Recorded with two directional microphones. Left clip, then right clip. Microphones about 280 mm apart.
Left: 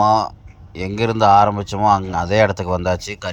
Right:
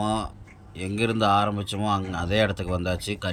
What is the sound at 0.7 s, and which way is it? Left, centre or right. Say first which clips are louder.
Speech: left 7 dB; centre.